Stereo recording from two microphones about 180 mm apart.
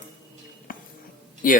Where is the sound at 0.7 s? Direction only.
50° left (ahead or behind).